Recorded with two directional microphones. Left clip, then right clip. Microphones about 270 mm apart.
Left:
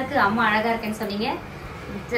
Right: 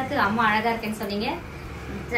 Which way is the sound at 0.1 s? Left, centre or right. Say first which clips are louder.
Left 2 dB; centre.